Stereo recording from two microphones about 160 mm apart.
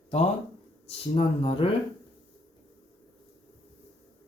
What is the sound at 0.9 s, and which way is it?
Speech, 35° left (ahead or behind).